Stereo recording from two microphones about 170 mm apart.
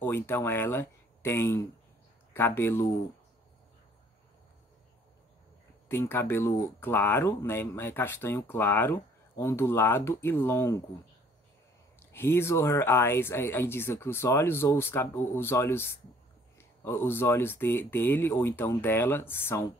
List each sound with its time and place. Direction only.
0.0 s speech: 15° left (ahead or behind)
5.9 s speech: 15° left (ahead or behind)
12.0 s speech: 15° left (ahead or behind)